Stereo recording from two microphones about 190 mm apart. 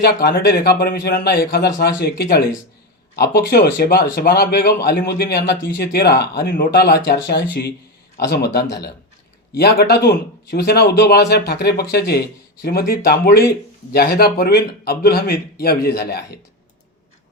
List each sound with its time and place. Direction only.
0.0 s a man's voice: 55° left (ahead or behind)